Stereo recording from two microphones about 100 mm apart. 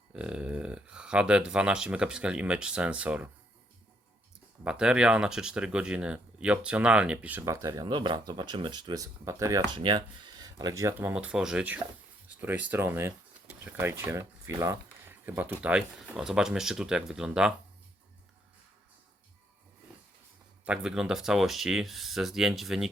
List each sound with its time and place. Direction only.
0.1 s speech: 10° right (ahead or behind)
4.6 s speech: 10° right (ahead or behind)
7.4 s speech: 30° right (ahead or behind)
7.9 s speech: 50° right (ahead or behind)
9.2 s speech: 30° right (ahead or behind)
9.7 s speech: 55° right (ahead or behind)
10.4 s speech: 40° right (ahead or behind)
11.0 s speech: 15° right (ahead or behind); by 14.5 s 30° right (ahead or behind)
15.0 s speech: 20° right (ahead or behind)
20.7 s speech: 5° right (ahead or behind)